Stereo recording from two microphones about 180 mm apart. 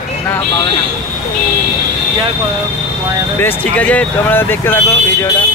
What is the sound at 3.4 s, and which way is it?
Speech, 10° left (ahead or behind).